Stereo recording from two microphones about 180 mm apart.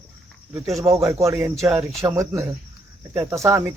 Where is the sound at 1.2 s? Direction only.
15° right (ahead or behind).